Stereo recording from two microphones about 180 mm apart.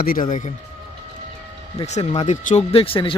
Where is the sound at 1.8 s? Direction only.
40° left (ahead or behind).